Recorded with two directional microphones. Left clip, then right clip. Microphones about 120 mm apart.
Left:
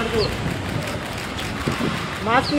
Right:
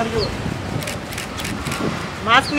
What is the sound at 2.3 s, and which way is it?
Speech, 45° right (ahead or behind).